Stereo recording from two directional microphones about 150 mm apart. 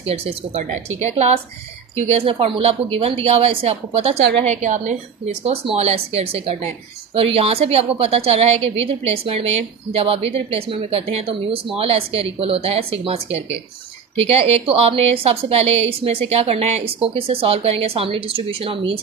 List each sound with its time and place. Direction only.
0.0 s a woman's voice: 40° right (ahead or behind)
4.5 s a woman's voice: 55° right (ahead or behind); by 18.9 s 40° right (ahead or behind)